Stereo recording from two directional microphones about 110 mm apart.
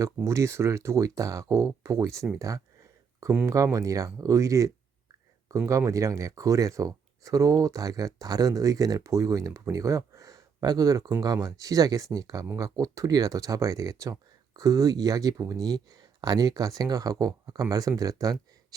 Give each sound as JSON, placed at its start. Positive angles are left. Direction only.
{"t": 0.2, "sound": "speech", "side_deg": -25}
{"t": 3.4, "sound": "speech", "side_deg": -30}